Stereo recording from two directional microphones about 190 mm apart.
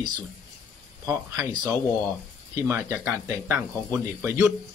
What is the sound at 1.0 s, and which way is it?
Speech, 20° right (ahead or behind).